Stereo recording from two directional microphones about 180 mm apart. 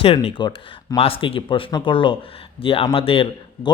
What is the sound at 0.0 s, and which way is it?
A man's voice, 30° left (ahead or behind).